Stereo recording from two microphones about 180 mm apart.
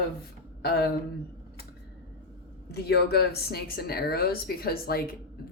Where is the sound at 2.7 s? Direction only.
65° left (ahead or behind).